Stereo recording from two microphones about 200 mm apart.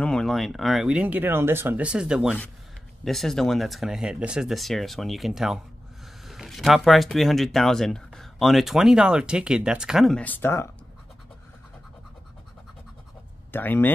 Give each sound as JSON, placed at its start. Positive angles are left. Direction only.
{"t": 0.0, "sound": "speech", "side_deg": 5}
{"t": 13.5, "sound": "speech", "side_deg": 10}